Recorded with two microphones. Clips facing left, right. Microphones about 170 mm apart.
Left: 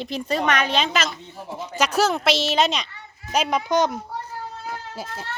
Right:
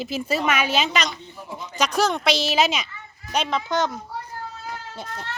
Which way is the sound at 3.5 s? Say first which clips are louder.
Left 4 dB; 15° left (ahead or behind).